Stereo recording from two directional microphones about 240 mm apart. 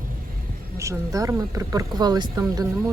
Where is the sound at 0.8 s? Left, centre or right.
Centre.